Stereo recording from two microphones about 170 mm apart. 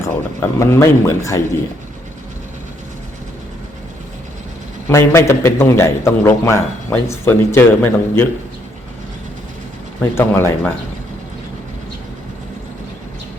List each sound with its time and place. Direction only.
0.3 s a man's voice: 15° left (ahead or behind)
4.9 s a man's voice: 15° left (ahead or behind)
10.0 s a man's voice: 15° left (ahead or behind)